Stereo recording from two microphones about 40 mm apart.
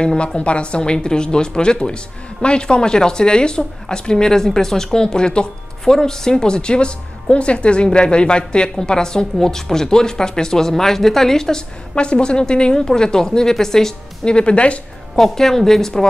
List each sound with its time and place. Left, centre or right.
0.4 s speech: left; by 13.9 s centre
14.2 s speech: left
15.1 s speech: centre